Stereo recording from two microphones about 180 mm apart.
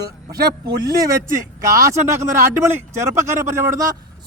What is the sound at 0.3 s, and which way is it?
Speech, 60° right (ahead or behind).